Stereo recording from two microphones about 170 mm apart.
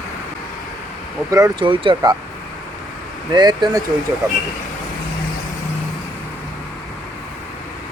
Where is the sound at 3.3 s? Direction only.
25° right (ahead or behind).